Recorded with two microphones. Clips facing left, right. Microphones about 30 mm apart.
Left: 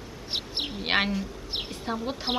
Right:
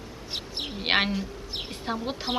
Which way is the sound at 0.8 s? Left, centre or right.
Centre.